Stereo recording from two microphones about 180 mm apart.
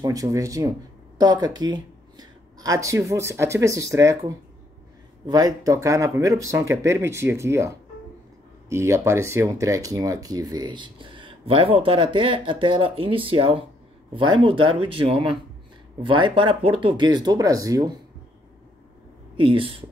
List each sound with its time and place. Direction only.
0.0 s speech: 20° right (ahead or behind)
19.3 s speech: 30° right (ahead or behind)